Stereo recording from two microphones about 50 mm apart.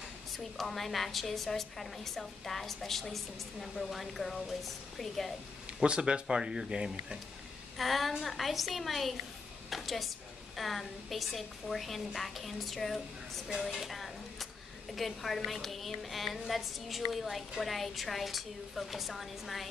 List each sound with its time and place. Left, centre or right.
0.4 s a woman's voice: centre
5.8 s speech: centre
7.7 s a woman's voice: centre
9.7 s a sound: centre
10.5 s a woman's voice: centre
13.6 s a sound: centre
15.0 s a woman's voice: centre